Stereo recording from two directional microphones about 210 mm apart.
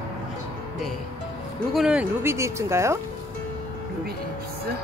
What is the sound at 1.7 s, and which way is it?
Speech, centre (ahead or behind).